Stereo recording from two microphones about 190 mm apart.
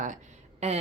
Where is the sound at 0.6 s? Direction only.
35° right (ahead or behind).